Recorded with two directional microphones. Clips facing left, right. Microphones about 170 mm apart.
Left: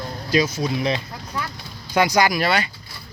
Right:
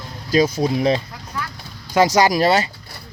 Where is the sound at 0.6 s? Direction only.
35° right (ahead or behind).